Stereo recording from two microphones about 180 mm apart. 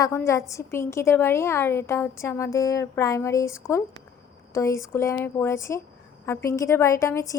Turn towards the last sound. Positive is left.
turn(degrees=15)  # may be behind; listen again after turning